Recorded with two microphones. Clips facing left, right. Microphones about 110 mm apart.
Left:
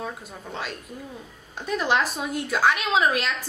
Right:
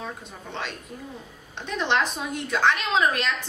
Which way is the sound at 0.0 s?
5° left (ahead or behind).